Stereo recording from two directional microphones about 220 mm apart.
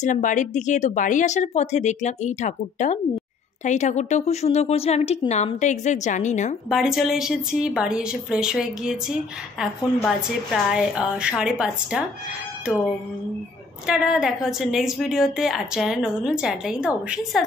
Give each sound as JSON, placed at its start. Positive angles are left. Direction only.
{"t": 0.0, "sound": "speech", "side_deg": 35}
{"t": 6.7, "sound": "a woman's voice", "side_deg": 0}
{"t": 13.8, "sound": "a woman's voice", "side_deg": -5}